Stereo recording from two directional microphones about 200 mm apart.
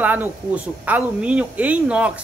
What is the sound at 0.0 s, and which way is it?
Speech, 10° right (ahead or behind).